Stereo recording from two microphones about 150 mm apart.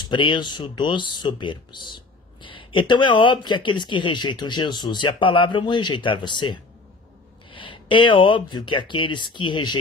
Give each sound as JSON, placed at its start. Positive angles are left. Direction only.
{"t": 0.0, "sound": "speech", "side_deg": 30}